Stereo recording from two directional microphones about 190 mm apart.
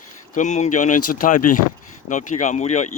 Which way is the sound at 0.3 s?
40° left (ahead or behind).